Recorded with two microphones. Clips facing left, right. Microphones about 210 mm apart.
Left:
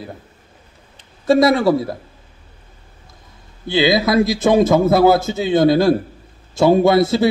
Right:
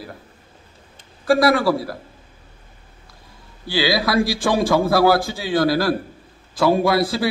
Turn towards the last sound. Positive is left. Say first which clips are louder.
# left 5 dB
turn(degrees=25)  # may be behind; listen again after turning